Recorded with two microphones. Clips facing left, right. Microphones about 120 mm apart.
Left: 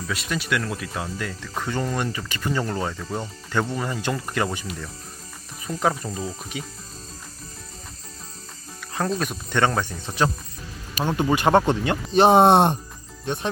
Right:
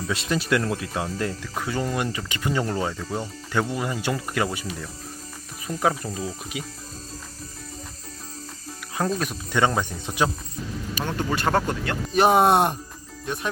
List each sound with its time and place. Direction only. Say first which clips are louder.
0.1 s speech: right 3 dB; 30° right (ahead or behind)
1.4 s speech: even; 5° right (ahead or behind)
2.1 s speech: even; 15° right (ahead or behind)
5.6 s speech: even; 5° right (ahead or behind)
9.0 s speech: even; centre (ahead or behind)
11.0 s speech: left 5 dB; 15° left (ahead or behind)